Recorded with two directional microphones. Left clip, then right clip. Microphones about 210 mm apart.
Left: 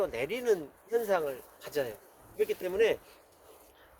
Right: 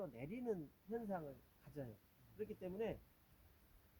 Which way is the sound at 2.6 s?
35° left (ahead or behind).